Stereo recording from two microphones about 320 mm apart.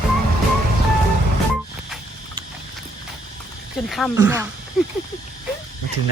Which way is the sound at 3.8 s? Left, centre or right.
Centre.